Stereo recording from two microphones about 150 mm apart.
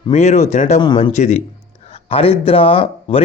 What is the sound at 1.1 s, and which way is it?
Speech, 50° left (ahead or behind).